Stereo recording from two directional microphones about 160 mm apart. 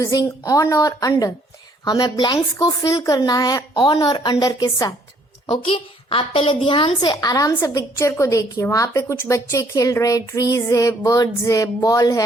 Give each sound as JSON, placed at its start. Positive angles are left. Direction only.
{"t": 0.0, "sound": "a woman's voice", "side_deg": 20}
{"t": 5.5, "sound": "a woman's voice", "side_deg": 35}